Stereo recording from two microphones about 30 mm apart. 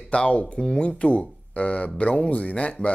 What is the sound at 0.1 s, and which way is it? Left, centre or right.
Speech, left.